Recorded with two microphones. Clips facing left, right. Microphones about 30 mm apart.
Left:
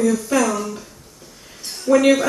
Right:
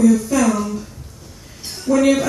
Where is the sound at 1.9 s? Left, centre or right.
Centre.